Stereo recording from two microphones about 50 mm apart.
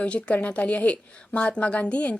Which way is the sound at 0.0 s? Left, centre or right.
Left.